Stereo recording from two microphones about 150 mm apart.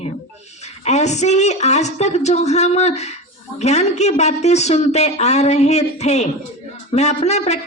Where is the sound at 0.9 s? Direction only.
50° left (ahead or behind).